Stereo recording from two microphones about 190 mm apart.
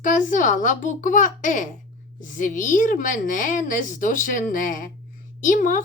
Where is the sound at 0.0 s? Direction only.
40° left (ahead or behind).